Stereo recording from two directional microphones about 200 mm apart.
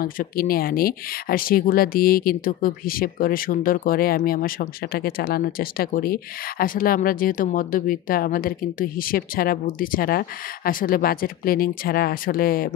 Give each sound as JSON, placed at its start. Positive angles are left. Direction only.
{"t": 0.0, "sound": "speech", "side_deg": 45}